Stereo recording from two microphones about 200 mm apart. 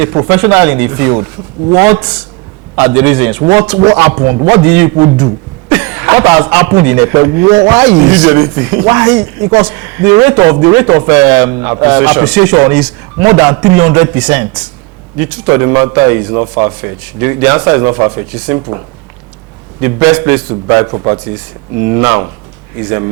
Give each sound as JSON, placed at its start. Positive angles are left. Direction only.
{"t": 0.0, "sound": "a man's voice", "side_deg": -15}
{"t": 4.9, "sound": "a man's voice", "side_deg": -25}
{"t": 19.8, "sound": "a man's voice", "side_deg": -10}